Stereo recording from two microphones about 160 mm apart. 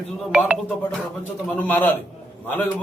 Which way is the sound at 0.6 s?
10° left (ahead or behind).